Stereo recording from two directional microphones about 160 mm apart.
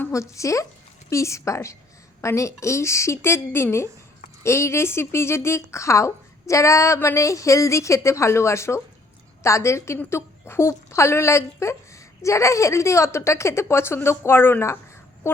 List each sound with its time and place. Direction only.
0.0 s a woman's voice: 20° left (ahead or behind)